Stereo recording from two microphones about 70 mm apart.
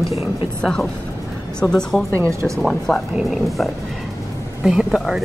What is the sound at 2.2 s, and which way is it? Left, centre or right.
Speech, right.